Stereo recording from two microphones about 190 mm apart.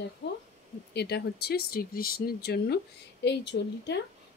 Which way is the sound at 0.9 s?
60° left (ahead or behind).